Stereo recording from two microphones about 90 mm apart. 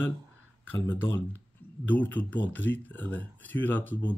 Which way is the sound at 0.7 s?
20° left (ahead or behind).